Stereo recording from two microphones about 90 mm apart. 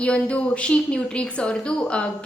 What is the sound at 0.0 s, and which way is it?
A woman's voice, 10° left (ahead or behind).